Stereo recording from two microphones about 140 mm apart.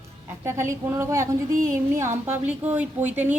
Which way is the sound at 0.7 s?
20° right (ahead or behind).